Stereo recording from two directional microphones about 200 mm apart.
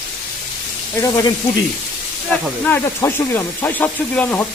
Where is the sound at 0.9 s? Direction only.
15° left (ahead or behind).